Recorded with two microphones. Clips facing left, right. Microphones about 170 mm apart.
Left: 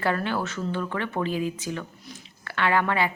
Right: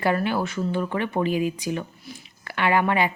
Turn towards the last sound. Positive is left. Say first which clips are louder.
# right 2 dB
turn(degrees=-15)  # may be behind; listen again after turning